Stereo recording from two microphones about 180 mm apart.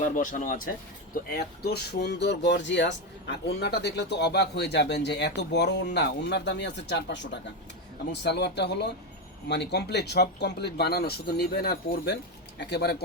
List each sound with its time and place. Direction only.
0.1 s speech: 45° left (ahead or behind)
1.1 s speech: 60° left (ahead or behind)